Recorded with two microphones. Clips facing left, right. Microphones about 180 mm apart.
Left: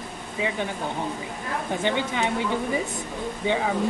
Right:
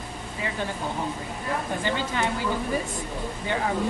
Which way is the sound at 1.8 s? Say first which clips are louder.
Left 5 dB; 20° left (ahead or behind).